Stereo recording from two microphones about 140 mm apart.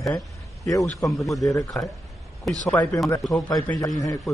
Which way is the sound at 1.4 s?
25° left (ahead or behind).